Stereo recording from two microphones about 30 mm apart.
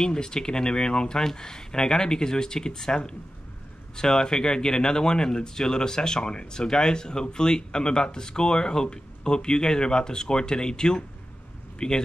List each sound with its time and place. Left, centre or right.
0.0 s speech: left